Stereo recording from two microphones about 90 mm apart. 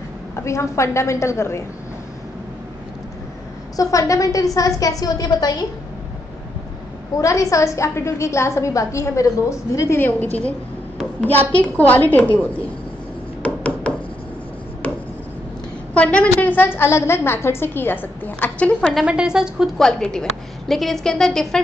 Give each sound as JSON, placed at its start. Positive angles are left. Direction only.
{"t": 0.4, "sound": "a woman's voice", "side_deg": 30}
{"t": 3.7, "sound": "a woman's voice", "side_deg": 40}
{"t": 7.2, "sound": "a woman's voice", "side_deg": 35}
{"t": 13.4, "sound": "a sound", "side_deg": 15}
{"t": 15.9, "sound": "a woman's voice", "side_deg": 15}
{"t": 19.0, "sound": "a woman's voice", "side_deg": -10}
{"t": 19.8, "sound": "a woman's voice", "side_deg": 5}